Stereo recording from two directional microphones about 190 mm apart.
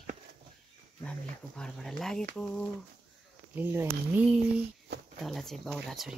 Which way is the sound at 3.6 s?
10° right (ahead or behind).